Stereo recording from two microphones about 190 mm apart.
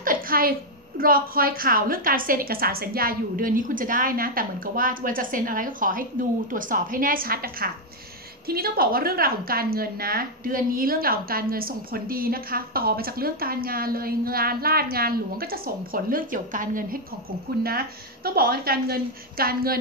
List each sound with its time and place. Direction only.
0.0 s a woman's voice: 50° right (ahead or behind)